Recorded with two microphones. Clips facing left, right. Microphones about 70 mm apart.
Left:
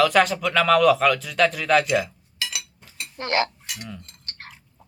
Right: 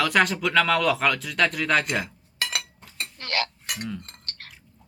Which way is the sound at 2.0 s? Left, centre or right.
Right.